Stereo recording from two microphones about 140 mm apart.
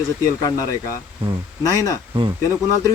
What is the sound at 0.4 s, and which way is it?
Speech, 25° left (ahead or behind).